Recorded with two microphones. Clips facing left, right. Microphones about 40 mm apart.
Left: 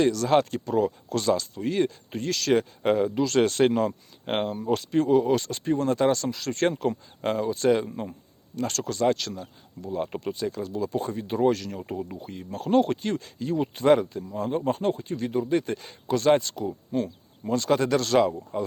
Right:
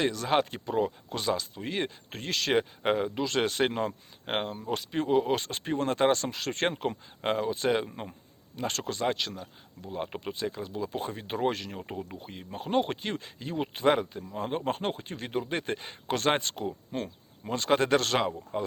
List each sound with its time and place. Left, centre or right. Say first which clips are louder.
0.0 s speech: left 5 dB; right
1.6 s speech: left 7 dB; right
4.3 s speech: left 4 dB; centre
4.9 s speech: left 4 dB; right
10.8 s speech: left 5 dB; right
11.9 s speech: left 5 dB; centre
12.3 s speech: left 6 dB; right
14.3 s speech: left 4 dB; right
18.5 s speech: left 3 dB; right